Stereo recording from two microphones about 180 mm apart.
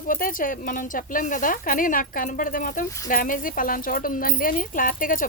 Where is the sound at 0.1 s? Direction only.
50° left (ahead or behind).